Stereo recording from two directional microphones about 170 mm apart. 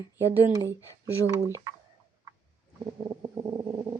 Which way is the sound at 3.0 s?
15° right (ahead or behind).